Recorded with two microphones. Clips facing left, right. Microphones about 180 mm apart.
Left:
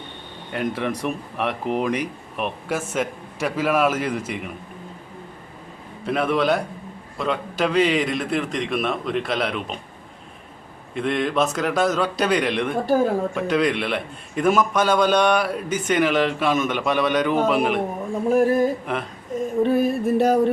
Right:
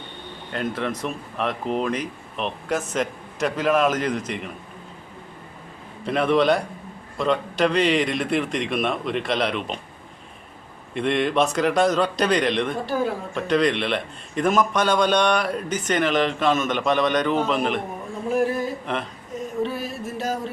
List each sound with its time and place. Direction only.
0.5 s a man's voice: 10° left (ahead or behind)
6.1 s a man's voice: 5° left (ahead or behind)
10.9 s a man's voice: centre (ahead or behind)
12.8 s a sound: 45° left (ahead or behind)
13.3 s a man's voice: 5° left (ahead or behind)
18.3 s a sound: 50° left (ahead or behind)
19.6 s music: 50° left (ahead or behind)